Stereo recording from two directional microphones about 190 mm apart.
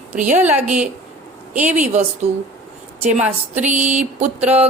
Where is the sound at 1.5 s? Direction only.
40° right (ahead or behind).